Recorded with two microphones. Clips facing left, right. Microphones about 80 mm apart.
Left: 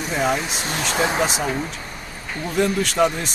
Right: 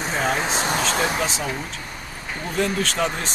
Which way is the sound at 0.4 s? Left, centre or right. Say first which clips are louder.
Right 4 dB; right.